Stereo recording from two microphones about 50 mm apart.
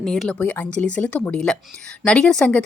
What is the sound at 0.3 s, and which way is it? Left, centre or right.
Speech, left.